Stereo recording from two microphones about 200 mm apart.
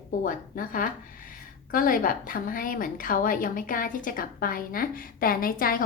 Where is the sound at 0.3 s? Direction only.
45° left (ahead or behind).